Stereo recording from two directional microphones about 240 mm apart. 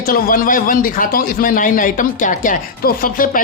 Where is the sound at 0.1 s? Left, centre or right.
Left.